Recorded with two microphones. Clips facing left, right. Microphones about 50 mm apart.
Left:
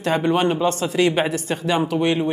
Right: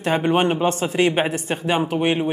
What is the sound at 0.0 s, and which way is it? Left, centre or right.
A man's voice, right.